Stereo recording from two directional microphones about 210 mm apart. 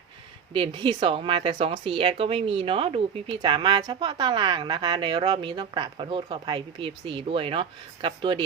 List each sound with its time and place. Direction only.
0.5 s speech: 25° right (ahead or behind)